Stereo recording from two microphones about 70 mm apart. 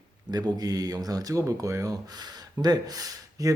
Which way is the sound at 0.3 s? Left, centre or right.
Right.